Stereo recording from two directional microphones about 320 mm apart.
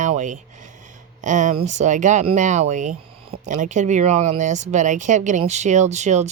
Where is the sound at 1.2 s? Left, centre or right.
Right.